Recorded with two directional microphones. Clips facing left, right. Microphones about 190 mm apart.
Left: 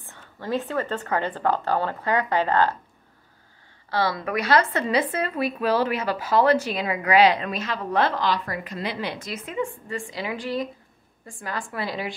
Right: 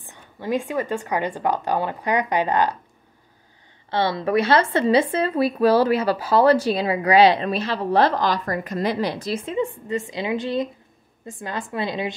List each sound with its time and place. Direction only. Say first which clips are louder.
0.0 s a woman's voice: right 3 dB; 15° right (ahead or behind)
3.9 s a woman's voice: right 4 dB; 25° right (ahead or behind)